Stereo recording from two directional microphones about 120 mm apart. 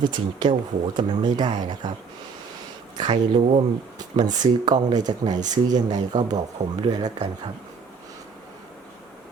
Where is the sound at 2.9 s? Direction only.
35° right (ahead or behind).